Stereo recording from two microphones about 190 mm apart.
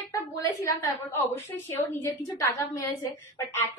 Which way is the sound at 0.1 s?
15° left (ahead or behind).